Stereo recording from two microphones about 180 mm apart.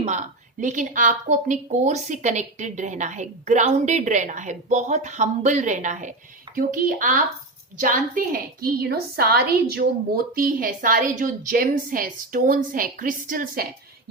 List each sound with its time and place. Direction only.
0.0 s a woman's voice: 40° right (ahead or behind)